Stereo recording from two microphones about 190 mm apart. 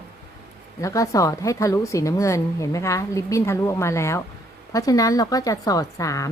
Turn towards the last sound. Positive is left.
turn(degrees=15)  # may be behind; listen again after turning